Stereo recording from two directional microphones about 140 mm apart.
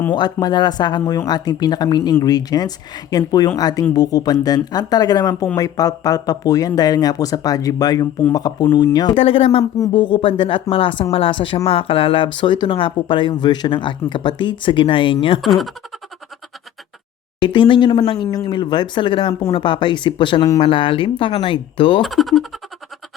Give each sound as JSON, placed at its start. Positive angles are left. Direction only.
{"t": 0.1, "sound": "speech", "side_deg": 30}
{"t": 15.4, "sound": "speech", "side_deg": 0}
{"t": 17.4, "sound": "speech", "side_deg": 35}
{"t": 19.3, "sound": "speech", "side_deg": 25}
{"t": 19.5, "sound": "speech", "side_deg": 35}
{"t": 22.0, "sound": "speech", "side_deg": 0}